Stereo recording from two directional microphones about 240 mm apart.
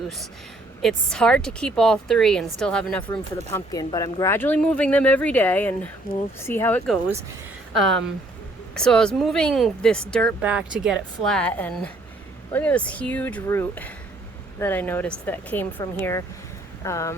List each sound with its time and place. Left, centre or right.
0.8 s speech: centre
3.1 s speech: centre